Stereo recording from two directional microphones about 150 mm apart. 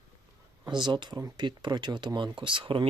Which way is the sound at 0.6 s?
30° right (ahead or behind).